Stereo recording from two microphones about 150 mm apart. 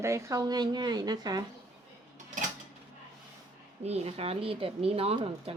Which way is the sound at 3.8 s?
45° right (ahead or behind).